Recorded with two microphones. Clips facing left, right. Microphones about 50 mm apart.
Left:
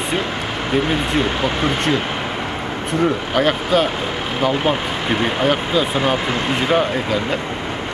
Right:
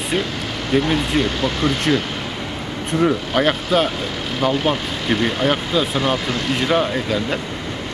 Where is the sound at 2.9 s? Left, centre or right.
Centre.